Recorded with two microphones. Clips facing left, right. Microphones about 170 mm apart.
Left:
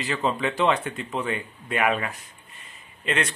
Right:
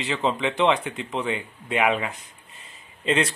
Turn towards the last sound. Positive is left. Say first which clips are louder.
# right 4 dB
turn(degrees=-25)  # may be behind; listen again after turning